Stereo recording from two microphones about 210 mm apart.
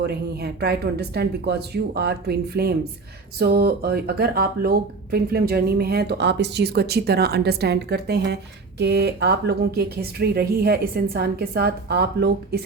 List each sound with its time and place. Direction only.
0.0 s speech: 50° right (ahead or behind)